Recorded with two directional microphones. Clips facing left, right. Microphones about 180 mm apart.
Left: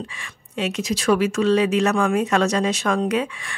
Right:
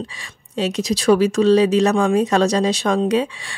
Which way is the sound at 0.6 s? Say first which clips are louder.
Right 3 dB; 35° right (ahead or behind).